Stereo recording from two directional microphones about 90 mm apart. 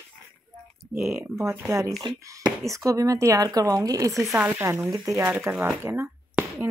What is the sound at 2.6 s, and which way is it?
Speech, 35° right (ahead or behind).